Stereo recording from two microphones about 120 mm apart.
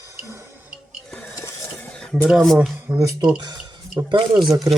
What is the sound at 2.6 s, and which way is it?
Speech, 15° right (ahead or behind).